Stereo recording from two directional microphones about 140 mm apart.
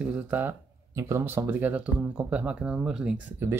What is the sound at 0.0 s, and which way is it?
Speech, 10° right (ahead or behind).